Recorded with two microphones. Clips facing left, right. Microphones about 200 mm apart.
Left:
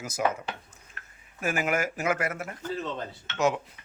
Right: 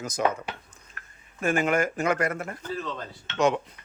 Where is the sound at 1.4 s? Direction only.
5° left (ahead or behind).